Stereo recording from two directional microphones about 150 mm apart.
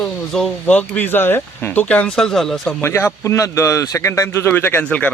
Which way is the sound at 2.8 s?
15° left (ahead or behind).